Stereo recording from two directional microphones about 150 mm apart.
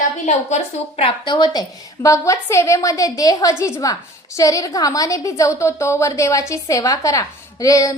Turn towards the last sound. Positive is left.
turn(degrees=25)  # may be behind; listen again after turning